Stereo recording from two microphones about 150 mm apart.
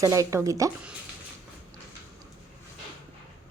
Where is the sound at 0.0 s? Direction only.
20° right (ahead or behind).